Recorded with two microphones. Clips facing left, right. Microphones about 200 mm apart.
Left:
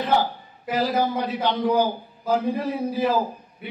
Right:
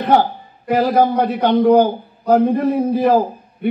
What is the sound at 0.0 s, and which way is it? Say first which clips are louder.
A man's voice: right 7 dB; 55° right (ahead or behind).